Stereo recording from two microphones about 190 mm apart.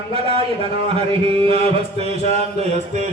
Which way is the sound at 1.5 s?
30° right (ahead or behind).